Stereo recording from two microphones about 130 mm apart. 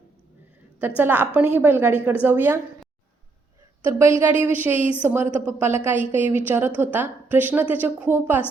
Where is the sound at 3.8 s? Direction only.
20° right (ahead or behind).